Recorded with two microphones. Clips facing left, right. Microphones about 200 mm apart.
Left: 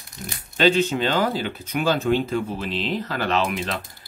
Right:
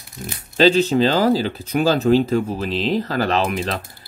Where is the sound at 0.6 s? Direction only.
35° right (ahead or behind).